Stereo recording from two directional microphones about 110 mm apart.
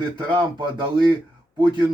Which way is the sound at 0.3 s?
40° right (ahead or behind).